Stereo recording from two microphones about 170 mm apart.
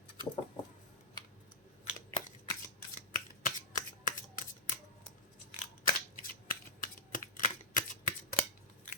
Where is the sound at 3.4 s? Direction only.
50° left (ahead or behind).